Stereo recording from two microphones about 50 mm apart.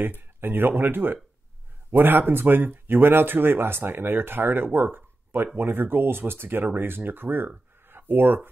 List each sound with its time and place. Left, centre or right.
0.4 s speech: right